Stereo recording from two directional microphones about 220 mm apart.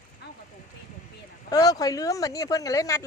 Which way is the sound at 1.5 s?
15° left (ahead or behind).